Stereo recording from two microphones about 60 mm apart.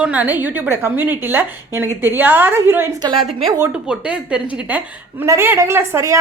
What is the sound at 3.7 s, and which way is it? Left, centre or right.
Speech, centre.